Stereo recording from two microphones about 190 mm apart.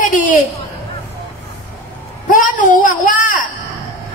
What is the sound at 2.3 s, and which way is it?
A woman's voice, 45° left (ahead or behind).